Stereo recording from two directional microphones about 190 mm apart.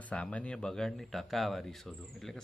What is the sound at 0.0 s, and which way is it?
Speech, 5° left (ahead or behind).